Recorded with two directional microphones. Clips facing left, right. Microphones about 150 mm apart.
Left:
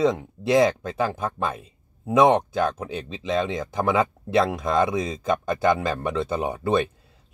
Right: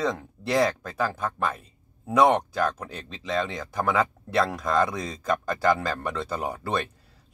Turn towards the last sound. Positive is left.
turn(degrees=20)  # may be behind; listen again after turning